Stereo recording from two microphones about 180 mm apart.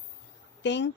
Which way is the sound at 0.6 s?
80° left.